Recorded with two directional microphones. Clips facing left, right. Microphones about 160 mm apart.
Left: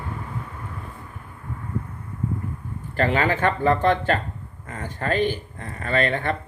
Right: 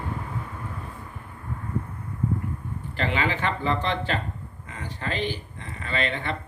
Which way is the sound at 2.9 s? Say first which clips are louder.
Left 5 dB; 45° left (ahead or behind).